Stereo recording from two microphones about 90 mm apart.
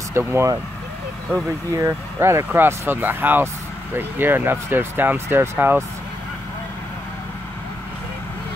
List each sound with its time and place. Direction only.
0.1 s speech: 30° right (ahead or behind)
1.8 s speech: 30° right (ahead or behind)